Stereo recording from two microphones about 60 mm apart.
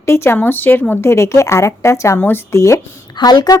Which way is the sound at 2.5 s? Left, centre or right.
Left.